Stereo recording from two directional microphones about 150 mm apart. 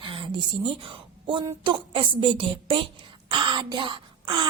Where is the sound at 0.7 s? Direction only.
35° right (ahead or behind).